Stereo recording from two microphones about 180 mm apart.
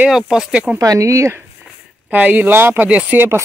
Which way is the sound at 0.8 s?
20° right (ahead or behind).